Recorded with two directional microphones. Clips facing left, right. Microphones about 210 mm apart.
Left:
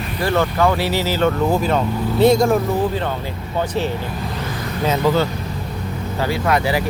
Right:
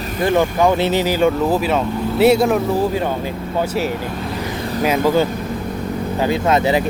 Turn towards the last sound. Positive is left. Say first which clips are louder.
# right 3 dB
turn(degrees=-20)  # may be behind; listen again after turning